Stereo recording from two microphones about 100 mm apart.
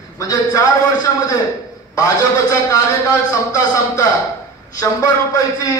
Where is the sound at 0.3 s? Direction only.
35° left (ahead or behind).